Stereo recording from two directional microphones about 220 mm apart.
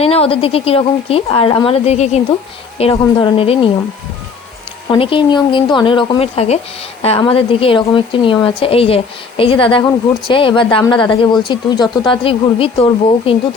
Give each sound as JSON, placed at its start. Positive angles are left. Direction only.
{"t": 0.0, "sound": "speech", "side_deg": 25}
{"t": 4.9, "sound": "speech", "side_deg": 25}